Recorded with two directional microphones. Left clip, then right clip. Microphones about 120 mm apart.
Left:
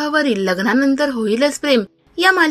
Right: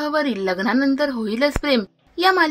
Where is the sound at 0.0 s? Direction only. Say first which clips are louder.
Left 4 dB; 15° left (ahead or behind).